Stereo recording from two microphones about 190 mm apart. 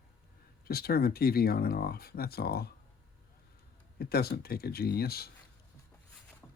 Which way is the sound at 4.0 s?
55° left (ahead or behind).